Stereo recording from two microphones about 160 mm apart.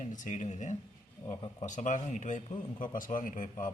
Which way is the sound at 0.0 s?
50° left (ahead or behind).